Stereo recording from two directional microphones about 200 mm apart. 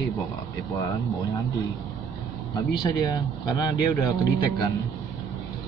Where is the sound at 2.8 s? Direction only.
20° left (ahead or behind).